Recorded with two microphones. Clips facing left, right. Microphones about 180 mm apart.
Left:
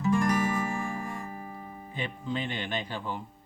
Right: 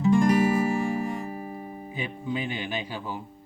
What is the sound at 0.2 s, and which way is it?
Music, 20° right (ahead or behind).